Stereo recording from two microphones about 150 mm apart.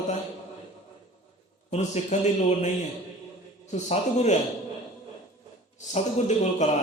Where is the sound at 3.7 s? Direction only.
50° left (ahead or behind).